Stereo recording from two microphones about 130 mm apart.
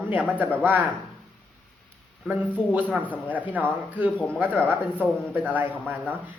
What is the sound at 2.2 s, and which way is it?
A man's voice, 10° right (ahead or behind).